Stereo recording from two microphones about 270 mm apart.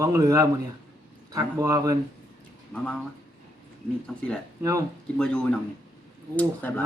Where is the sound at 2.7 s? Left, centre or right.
Centre.